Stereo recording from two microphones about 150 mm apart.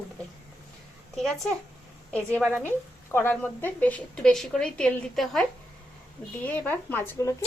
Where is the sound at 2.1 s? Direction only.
5° left (ahead or behind).